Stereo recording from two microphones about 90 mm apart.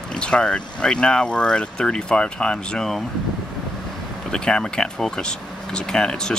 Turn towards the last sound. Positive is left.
turn(degrees=10)  # may be behind; listen again after turning